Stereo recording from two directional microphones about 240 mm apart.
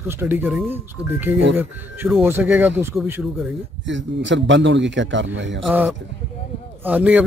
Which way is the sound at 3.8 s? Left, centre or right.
Right.